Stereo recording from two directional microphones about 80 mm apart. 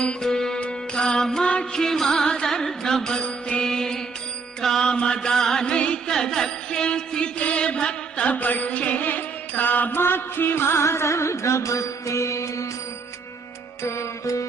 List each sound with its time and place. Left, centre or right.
0.0 s music: centre; by 12.6 s left
13.8 s music: left